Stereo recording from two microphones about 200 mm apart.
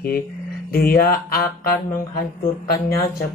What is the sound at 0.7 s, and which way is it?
A man's voice, 50° left (ahead or behind).